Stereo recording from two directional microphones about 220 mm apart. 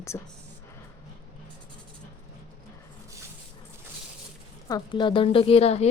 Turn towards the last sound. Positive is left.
turn(degrees=30)  # may be behind; listen again after turning